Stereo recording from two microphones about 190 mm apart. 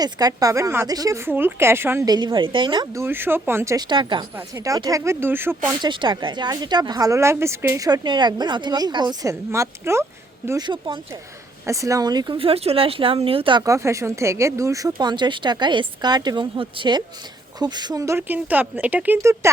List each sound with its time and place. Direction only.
0.0 s a woman's voice: 20° right (ahead or behind)
5.6 s speech: 25° right (ahead or behind)
10.7 s a woman's voice: 25° right (ahead or behind)